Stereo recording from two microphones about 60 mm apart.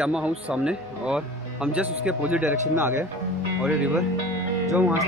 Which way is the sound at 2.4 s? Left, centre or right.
Right.